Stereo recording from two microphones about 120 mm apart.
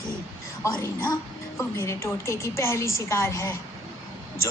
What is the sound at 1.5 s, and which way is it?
A woman's voice, 25° left (ahead or behind).